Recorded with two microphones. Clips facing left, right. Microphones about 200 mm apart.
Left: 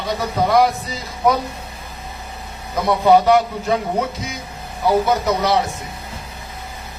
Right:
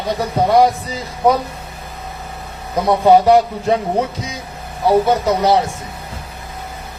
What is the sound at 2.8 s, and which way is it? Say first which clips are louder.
Speech: right 2 dB; 35° right (ahead or behind).